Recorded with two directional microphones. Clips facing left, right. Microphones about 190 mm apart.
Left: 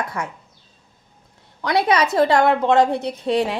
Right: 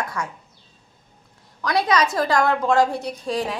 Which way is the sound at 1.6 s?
25° left (ahead or behind).